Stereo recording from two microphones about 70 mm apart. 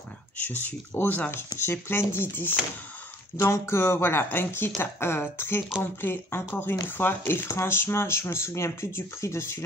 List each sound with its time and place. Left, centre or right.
0.4 s speech: left